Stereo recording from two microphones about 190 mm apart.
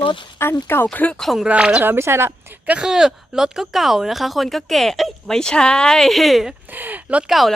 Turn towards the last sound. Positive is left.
turn(degrees=0)  # may be behind; listen again after turning